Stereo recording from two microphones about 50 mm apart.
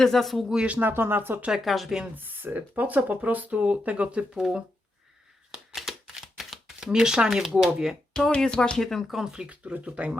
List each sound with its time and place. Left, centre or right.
0.0 s speech: centre
0.6 s speech: right
0.9 s speech: right
1.6 s speech: centre
2.1 s speech: right
5.7 s a sound: centre
6.8 s speech: centre
8.1 s speech: centre
8.8 s speech: centre
9.0 s speech: centre
9.5 s speech: right